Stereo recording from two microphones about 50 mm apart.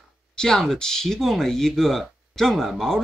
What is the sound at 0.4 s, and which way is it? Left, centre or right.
Speech, centre.